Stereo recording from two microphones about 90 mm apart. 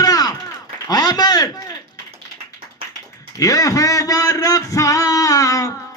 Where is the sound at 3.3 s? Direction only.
40° left (ahead or behind).